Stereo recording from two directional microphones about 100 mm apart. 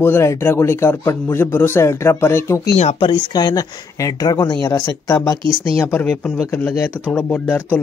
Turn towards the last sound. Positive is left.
turn(degrees=15)  # may be behind; listen again after turning